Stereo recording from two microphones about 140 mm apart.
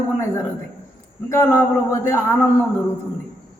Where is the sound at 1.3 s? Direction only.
15° left (ahead or behind).